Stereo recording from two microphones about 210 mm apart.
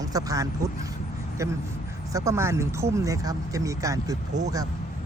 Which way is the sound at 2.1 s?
15° right (ahead or behind).